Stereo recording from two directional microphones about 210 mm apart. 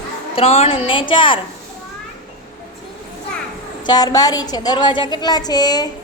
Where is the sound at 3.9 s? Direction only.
20° left (ahead or behind).